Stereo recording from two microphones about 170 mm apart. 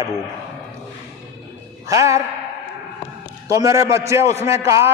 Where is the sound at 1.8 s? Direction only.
20° right (ahead or behind).